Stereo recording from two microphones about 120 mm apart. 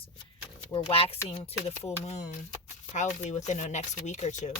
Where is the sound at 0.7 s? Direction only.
50° left (ahead or behind); by 4.5 s 80° left.